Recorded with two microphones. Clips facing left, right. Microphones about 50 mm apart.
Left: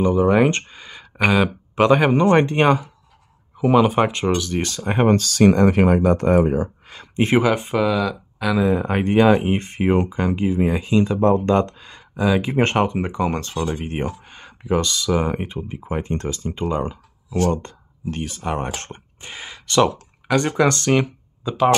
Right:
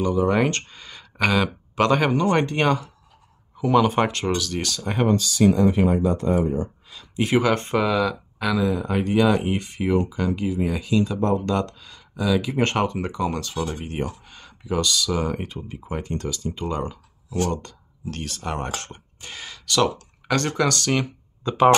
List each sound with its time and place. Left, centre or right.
0.0 s speech: left
2.1 s speech: left
5.0 s speech: left
5.5 s speech: left
6.9 s a sound: left
7.4 s speech: centre
8.5 s speech: left
8.8 s speech: left
18.1 s speech: centre
21.4 s speech: centre